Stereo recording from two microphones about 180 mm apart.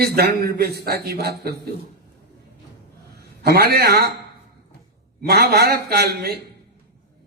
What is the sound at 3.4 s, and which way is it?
Speech, 60° right (ahead or behind).